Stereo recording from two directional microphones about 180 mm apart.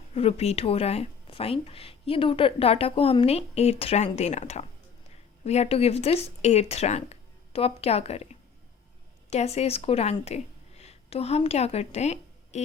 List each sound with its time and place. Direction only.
0.1 s a woman's voice: 35° left (ahead or behind)